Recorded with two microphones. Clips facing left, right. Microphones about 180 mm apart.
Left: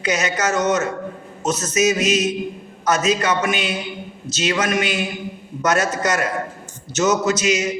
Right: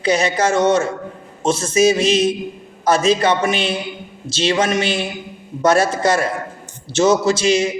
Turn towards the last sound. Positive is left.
turn(degrees=-30)  # may be behind; listen again after turning